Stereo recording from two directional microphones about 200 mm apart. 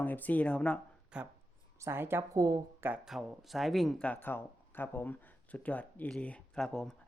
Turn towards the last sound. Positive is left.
turn(degrees=5)  # may be behind; listen again after turning